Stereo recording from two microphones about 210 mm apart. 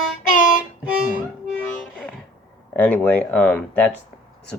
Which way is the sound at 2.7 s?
5° left (ahead or behind).